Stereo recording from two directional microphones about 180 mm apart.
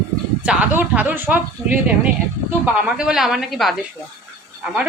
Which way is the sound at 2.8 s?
5° right (ahead or behind).